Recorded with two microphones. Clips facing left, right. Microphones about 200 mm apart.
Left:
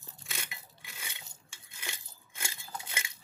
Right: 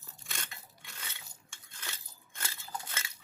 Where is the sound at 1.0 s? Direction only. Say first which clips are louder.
Left 1 dB; 15° left (ahead or behind).